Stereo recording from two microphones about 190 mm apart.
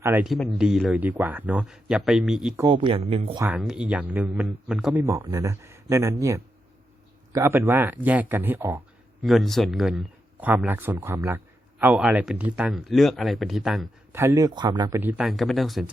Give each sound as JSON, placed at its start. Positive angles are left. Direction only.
{"t": 0.0, "sound": "speech", "side_deg": -10}
{"t": 2.6, "sound": "speech", "side_deg": -25}
{"t": 3.3, "sound": "speech", "side_deg": -10}
{"t": 14.1, "sound": "speech", "side_deg": -15}